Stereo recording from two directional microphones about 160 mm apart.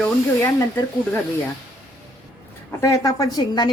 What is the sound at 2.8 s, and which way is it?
Speech, 20° left (ahead or behind).